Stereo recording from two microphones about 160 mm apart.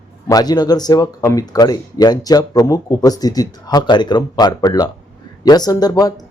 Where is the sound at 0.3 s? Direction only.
25° left (ahead or behind).